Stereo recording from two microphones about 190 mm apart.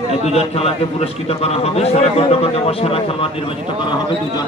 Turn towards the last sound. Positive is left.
turn(degrees=30)  # may be behind; listen again after turning